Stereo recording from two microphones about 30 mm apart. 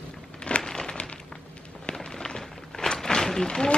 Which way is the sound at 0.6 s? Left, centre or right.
Left.